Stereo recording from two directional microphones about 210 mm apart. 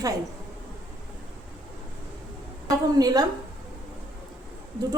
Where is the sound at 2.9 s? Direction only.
20° right (ahead or behind).